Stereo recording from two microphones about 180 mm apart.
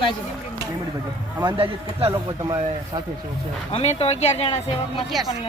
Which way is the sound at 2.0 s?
20° right (ahead or behind).